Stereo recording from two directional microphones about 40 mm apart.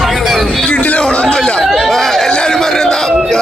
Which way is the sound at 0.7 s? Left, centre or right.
Left.